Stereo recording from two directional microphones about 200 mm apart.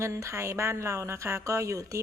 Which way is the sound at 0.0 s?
15° right (ahead or behind).